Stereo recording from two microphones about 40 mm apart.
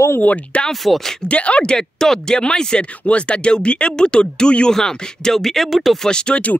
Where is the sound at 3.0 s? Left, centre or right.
Left.